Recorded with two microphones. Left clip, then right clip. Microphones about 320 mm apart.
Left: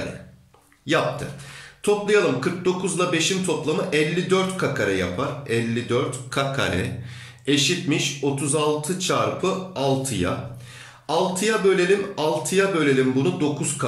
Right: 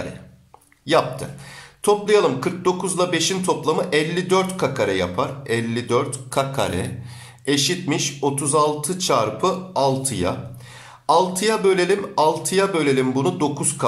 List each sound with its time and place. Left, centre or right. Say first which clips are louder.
1.9 s speech: right 3 dB; centre